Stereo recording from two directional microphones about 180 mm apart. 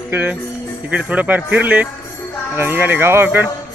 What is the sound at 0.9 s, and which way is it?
Speech, 5° right (ahead or behind).